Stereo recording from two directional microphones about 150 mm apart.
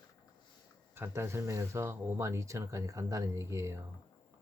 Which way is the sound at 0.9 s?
15° right (ahead or behind).